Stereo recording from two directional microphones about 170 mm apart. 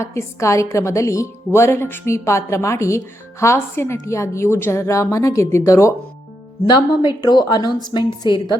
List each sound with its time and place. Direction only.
0.0 s a woman's voice: 15° left (ahead or behind)